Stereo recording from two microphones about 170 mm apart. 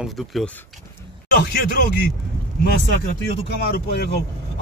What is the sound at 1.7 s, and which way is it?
Speech, 60° left (ahead or behind).